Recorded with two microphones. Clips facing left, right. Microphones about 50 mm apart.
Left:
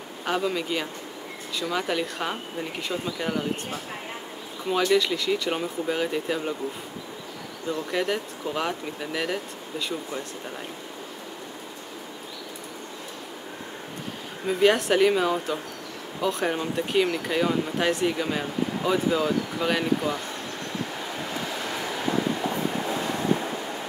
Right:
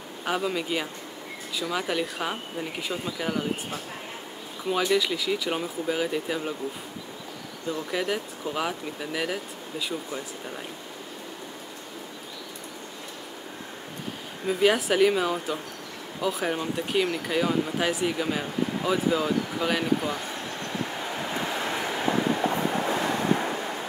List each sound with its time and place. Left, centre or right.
0.2 s speech: centre
4.8 s speech: centre
7.6 s speech: centre
14.4 s speech: centre
21.0 s train: right